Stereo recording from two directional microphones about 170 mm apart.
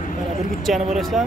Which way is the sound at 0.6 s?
Centre (ahead or behind).